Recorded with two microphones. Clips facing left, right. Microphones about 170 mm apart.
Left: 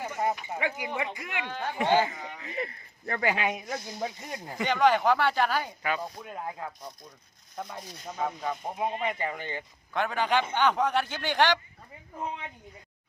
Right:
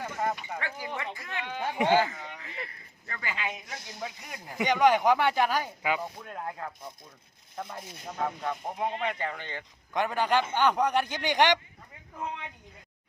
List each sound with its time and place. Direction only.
0.0 s a sound: 15° left (ahead or behind)
0.4 s speech: 15° left (ahead or behind)
1.5 s a man's voice: 15° right (ahead or behind)
1.9 s speech: 20° left (ahead or behind)
3.1 s speech: 65° left (ahead or behind)
4.0 s speech: 30° left (ahead or behind)
4.5 s a man's voice: 15° right (ahead or behind)
6.0 s speech: 10° left (ahead or behind)
9.9 s a man's voice: 10° right (ahead or behind)